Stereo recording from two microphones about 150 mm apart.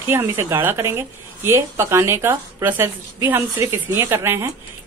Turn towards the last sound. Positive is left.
turn(degrees=-15)  # may be behind; listen again after turning